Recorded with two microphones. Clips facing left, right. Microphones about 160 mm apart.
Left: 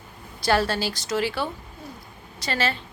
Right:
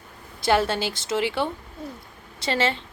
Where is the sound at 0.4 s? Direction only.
20° right (ahead or behind).